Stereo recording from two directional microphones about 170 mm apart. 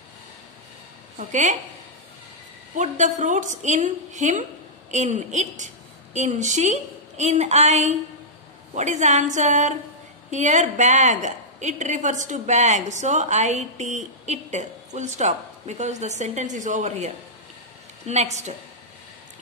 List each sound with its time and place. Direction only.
1.1 s a woman's voice: 45° right (ahead or behind)
2.7 s a woman's voice: 45° right (ahead or behind)